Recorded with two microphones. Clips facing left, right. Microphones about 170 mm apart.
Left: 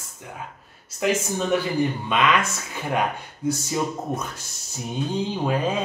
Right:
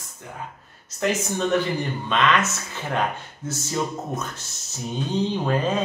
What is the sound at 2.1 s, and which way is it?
Speech, 10° left (ahead or behind).